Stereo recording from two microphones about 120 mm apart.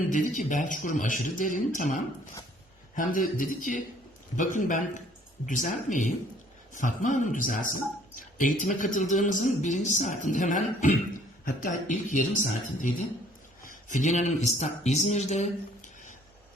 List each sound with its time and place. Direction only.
0.1 s a man's voice: 90° left